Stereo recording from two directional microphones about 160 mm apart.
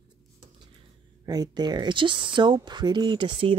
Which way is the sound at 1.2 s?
25° right (ahead or behind).